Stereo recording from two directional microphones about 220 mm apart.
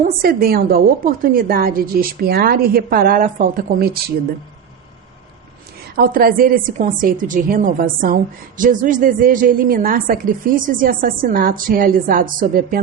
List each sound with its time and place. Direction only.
0.0 s a woman's voice: 40° right (ahead or behind)
6.0 s a woman's voice: 40° right (ahead or behind)